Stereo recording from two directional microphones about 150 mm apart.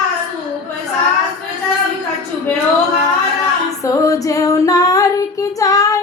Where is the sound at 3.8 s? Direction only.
20° left (ahead or behind).